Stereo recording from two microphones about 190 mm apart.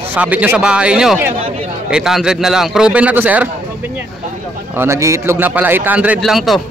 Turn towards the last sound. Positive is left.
turn(degrees=0)  # may be behind; listen again after turning